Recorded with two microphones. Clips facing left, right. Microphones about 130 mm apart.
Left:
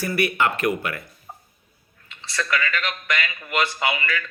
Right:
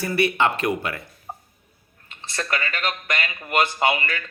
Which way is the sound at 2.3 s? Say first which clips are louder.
Left 2 dB; 45° right (ahead or behind).